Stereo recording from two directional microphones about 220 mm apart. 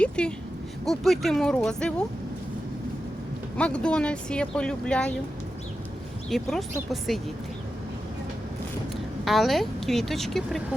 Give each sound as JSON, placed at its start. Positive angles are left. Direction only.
{"t": 0.0, "sound": "speech", "side_deg": 5}
{"t": 3.6, "sound": "speech", "side_deg": 5}
{"t": 6.3, "sound": "speech", "side_deg": 0}
{"t": 9.2, "sound": "speech", "side_deg": 0}